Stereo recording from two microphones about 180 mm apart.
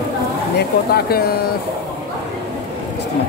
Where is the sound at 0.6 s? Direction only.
60° left (ahead or behind).